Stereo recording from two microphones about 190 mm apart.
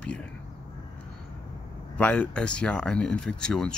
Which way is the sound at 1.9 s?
5° left (ahead or behind).